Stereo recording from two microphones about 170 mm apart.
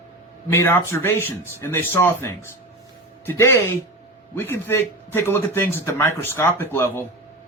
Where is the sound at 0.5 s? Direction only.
15° left (ahead or behind).